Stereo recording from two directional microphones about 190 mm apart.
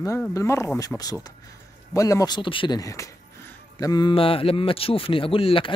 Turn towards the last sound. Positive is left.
turn(degrees=30)  # may be behind; listen again after turning